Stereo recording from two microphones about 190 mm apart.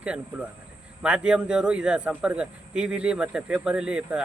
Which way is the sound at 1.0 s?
5° right (ahead or behind).